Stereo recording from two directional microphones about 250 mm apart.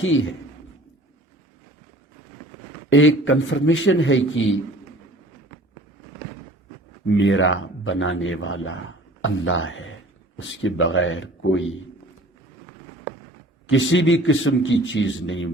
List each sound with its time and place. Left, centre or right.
0.0 s speech: left
2.9 s speech: left
7.1 s speech: left
13.7 s speech: left